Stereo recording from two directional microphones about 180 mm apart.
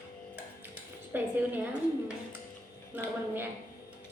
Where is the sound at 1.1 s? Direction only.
10° right (ahead or behind).